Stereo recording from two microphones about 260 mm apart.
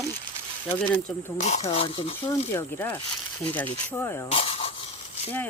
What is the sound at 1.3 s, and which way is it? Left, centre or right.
Speech, left.